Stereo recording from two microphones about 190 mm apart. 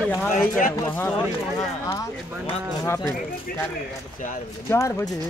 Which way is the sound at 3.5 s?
50° left (ahead or behind).